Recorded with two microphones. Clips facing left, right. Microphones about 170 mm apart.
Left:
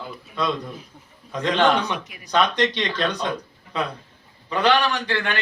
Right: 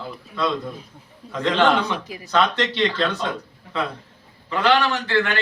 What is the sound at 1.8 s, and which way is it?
Speech, 30° right (ahead or behind).